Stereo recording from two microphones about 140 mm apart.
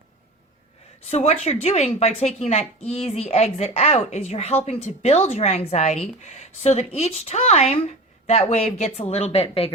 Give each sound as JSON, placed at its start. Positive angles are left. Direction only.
{"t": 1.0, "sound": "a woman's voice", "side_deg": 50}